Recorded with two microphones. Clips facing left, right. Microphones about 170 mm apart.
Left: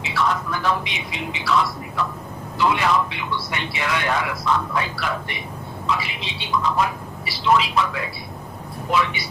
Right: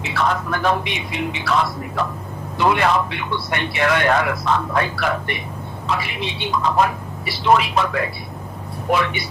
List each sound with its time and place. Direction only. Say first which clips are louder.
0.0 s a man's voice: right 2 dB; 55° right (ahead or behind)
2.6 s a man's voice: right 2 dB; 55° right (ahead or behind)